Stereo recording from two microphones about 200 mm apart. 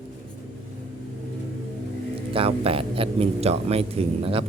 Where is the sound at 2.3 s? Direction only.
30° right (ahead or behind).